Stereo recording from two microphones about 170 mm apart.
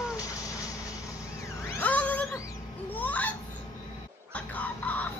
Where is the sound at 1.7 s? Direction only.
10° left (ahead or behind).